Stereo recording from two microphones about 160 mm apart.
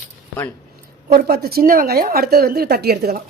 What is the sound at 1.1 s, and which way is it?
Speech, 70° right (ahead or behind).